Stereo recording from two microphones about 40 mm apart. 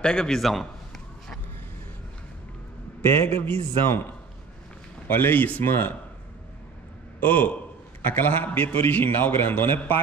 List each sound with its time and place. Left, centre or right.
0.0 s a man's voice: centre
0.4 s a sound: centre
3.0 s a man's voice: left
5.6 s a man's voice: left
7.2 s a man's voice: left
8.0 s a man's voice: left